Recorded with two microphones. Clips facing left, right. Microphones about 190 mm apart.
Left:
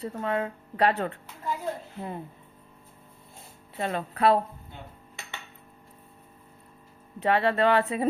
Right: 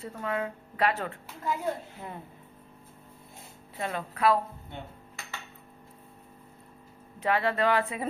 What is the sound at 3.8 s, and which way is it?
Speech, 30° left (ahead or behind).